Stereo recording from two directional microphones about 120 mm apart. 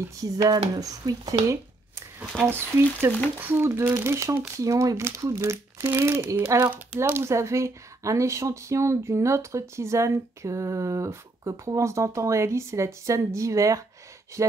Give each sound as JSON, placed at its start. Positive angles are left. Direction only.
{"t": 0.0, "sound": "speech", "side_deg": -30}
{"t": 2.4, "sound": "speech", "side_deg": -20}